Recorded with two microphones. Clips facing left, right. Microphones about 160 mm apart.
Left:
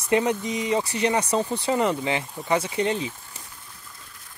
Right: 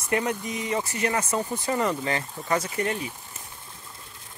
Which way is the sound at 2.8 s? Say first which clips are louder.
Left 3 dB; 25° left (ahead or behind).